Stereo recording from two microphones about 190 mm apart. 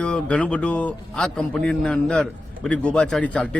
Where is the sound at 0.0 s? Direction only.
5° left (ahead or behind).